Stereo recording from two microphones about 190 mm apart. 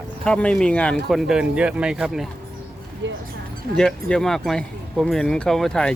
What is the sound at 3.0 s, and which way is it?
Speech, 70° right (ahead or behind).